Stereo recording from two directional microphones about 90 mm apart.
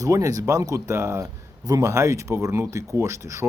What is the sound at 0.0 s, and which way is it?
Speech, 35° right (ahead or behind).